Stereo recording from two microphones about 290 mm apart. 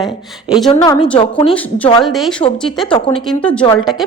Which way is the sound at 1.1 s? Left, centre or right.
Centre.